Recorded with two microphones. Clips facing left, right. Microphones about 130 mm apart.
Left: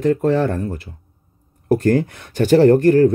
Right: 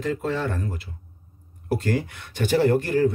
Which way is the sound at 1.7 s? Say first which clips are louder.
Left 9 dB; 45° left (ahead or behind).